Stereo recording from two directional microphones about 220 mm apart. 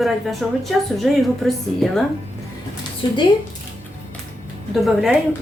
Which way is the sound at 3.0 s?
20° left (ahead or behind).